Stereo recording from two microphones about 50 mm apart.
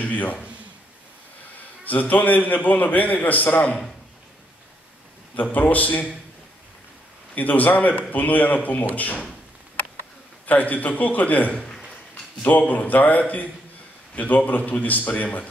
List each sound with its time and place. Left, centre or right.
0.0 s a man's voice: left
1.9 s a man's voice: left
5.3 s a man's voice: left
7.3 s a man's voice: left
10.4 s a man's voice: left